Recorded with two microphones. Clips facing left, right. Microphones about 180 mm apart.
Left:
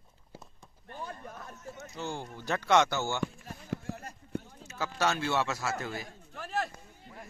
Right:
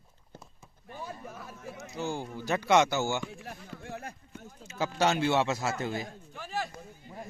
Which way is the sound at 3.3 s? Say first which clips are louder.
Left 4 dB; 65° right (ahead or behind).